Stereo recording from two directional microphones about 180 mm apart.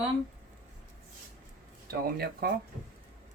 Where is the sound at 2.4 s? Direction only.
60° right (ahead or behind).